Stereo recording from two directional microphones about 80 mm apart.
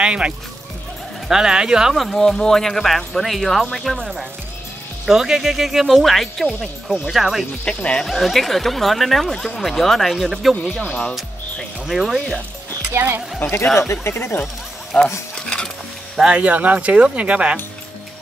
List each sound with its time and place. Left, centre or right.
0.0 s speech: centre
1.3 s speech: centre
7.6 s speech: centre
8.1 s speech: centre
10.9 s speech: centre
11.9 s speech: centre
12.9 s speech: right
13.4 s speech: left
14.4 s a sound: centre
16.2 s speech: centre